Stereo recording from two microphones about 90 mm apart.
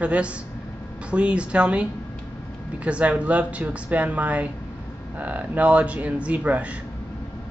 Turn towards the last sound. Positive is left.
turn(degrees=-15)  # may be behind; listen again after turning